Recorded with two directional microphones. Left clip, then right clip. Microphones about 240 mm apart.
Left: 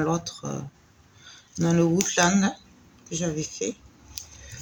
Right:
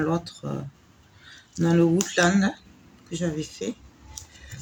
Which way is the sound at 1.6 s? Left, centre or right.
Centre.